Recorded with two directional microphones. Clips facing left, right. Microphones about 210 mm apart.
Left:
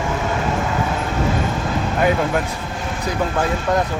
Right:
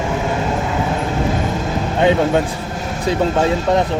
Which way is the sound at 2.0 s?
25° right (ahead or behind).